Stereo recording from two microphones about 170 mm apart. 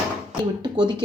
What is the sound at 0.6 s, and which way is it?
Speech, 25° right (ahead or behind).